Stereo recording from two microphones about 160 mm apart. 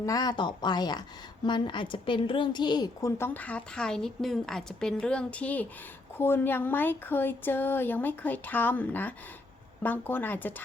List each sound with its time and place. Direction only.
0.0 s a woman's voice: 20° left (ahead or behind)